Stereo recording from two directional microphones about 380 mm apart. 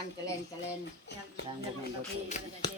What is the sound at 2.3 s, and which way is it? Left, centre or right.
Speech, centre.